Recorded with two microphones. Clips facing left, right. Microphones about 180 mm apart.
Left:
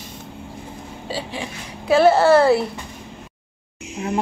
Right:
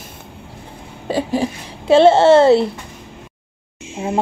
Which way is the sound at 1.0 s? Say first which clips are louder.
Right 10 dB; 55° right (ahead or behind).